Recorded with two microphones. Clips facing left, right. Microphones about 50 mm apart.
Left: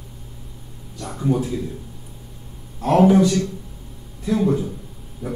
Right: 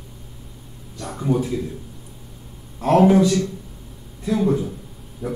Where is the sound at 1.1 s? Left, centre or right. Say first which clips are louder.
Even; centre.